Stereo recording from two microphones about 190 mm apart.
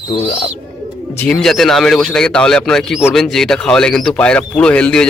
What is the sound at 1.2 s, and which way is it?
Speech, 5° left (ahead or behind).